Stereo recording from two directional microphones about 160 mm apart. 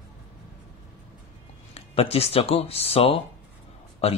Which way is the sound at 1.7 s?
40° left (ahead or behind).